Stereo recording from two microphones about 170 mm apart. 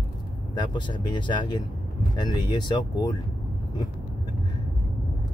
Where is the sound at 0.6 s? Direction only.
25° left (ahead or behind).